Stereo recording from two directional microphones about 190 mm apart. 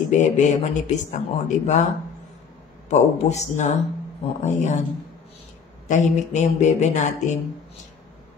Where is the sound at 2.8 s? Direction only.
35° left (ahead or behind).